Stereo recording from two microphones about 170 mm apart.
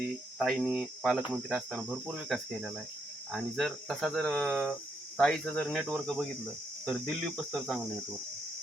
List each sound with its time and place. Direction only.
0.3 s speech: centre (ahead or behind)